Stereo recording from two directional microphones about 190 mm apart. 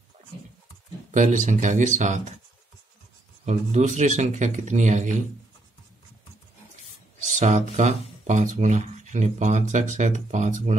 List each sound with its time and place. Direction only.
1.1 s speech: 40° right (ahead or behind)
3.4 s speech: 35° right (ahead or behind)
7.3 s speech: 40° right (ahead or behind)